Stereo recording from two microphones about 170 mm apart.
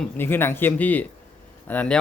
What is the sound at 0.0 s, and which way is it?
Speech, 10° left (ahead or behind).